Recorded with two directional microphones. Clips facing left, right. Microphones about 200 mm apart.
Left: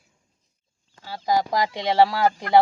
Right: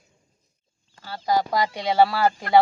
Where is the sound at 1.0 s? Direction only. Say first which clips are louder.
Even; 15° left (ahead or behind).